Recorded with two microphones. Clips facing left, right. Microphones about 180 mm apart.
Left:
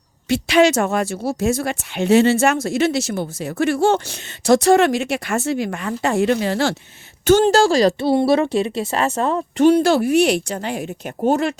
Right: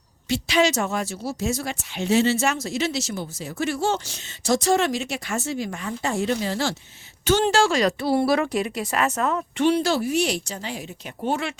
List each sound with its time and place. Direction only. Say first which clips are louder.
0.3 s speech: left 6 dB; 60° left (ahead or behind)
7.3 s speech: left 6 dB; 40° left (ahead or behind)
9.6 s speech: left 7 dB; 50° left (ahead or behind)